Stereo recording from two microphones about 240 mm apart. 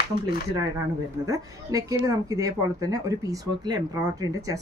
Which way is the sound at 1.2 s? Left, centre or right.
Centre.